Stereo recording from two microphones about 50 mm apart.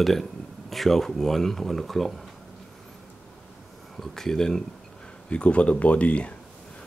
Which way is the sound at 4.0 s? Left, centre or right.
Centre.